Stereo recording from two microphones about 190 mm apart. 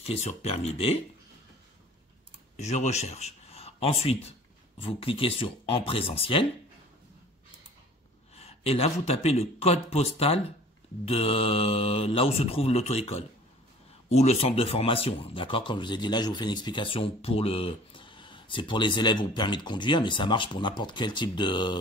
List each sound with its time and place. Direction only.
0.0 s speech: 35° left (ahead or behind)
2.5 s a man's voice: 35° left (ahead or behind)
8.4 s speech: 30° left (ahead or behind)